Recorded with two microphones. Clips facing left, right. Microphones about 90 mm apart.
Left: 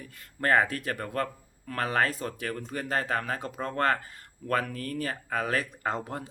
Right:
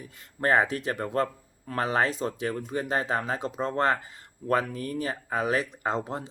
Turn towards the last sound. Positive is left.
turn(degrees=-25)  # may be behind; listen again after turning